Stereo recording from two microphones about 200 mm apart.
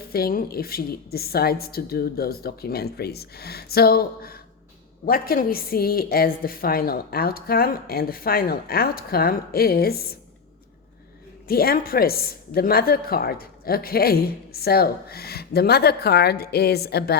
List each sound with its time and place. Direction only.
0.1 s a woman's voice: 50° left (ahead or behind)
11.4 s a woman's voice: 50° left (ahead or behind)